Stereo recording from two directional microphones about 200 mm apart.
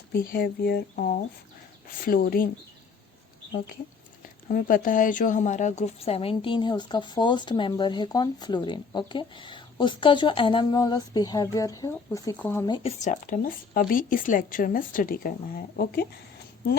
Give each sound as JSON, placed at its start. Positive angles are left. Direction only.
{"t": 0.1, "sound": "speech", "side_deg": 45}
{"t": 4.4, "sound": "speech", "side_deg": 40}
{"t": 12.7, "sound": "speech", "side_deg": 35}